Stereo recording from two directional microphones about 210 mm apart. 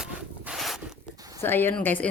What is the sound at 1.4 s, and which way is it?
Speech, 10° left (ahead or behind).